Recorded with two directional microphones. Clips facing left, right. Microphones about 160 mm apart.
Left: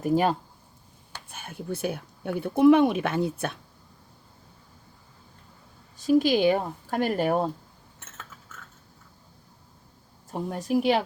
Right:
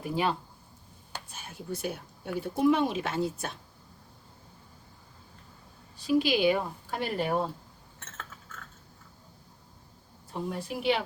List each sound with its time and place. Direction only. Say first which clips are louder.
0.0 s a woman's voice: left 6 dB; 45° left (ahead or behind)
1.3 s speech: left 5 dB; 55° left (ahead or behind)
6.0 s a woman's voice: left 4 dB; 45° left (ahead or behind)
10.3 s a woman's voice: left 8 dB; 45° left (ahead or behind)